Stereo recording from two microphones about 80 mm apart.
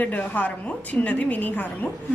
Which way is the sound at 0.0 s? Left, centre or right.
Centre.